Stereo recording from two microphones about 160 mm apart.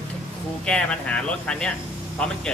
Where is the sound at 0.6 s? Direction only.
5° left (ahead or behind).